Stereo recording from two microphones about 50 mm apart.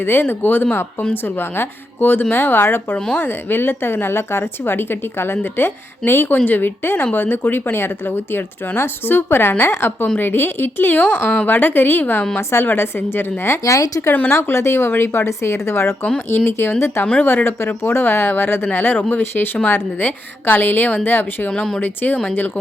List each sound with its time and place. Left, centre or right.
0.0 s speech: left
6.3 s speech: left
11.0 s a woman's voice: left
11.4 s a woman's voice: left
12.4 s speech: left
12.6 s speech: left
13.7 s speech: left
14.1 s speech: left
14.5 s speech: left
14.8 s speech: left
15.3 s a woman's voice: left
19.2 s speech: left
21.5 s a woman's voice: centre
21.8 s a woman's voice: left